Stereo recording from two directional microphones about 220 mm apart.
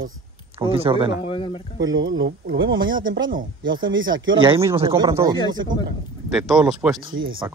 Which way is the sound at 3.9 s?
60° right (ahead or behind).